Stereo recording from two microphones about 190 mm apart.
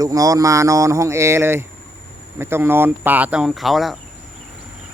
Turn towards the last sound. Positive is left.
turn(degrees=0)  # may be behind; listen again after turning